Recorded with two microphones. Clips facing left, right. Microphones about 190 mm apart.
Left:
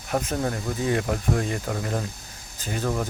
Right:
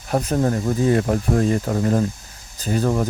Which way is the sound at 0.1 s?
35° right (ahead or behind).